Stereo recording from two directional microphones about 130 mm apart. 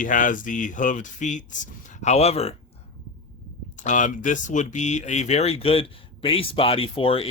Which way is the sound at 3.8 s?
75° left (ahead or behind).